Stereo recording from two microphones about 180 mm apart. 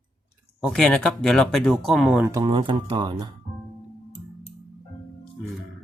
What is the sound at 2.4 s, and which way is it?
Speech, 30° right (ahead or behind).